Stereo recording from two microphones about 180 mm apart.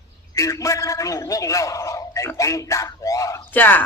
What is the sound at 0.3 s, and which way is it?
A man's voice, 20° left (ahead or behind).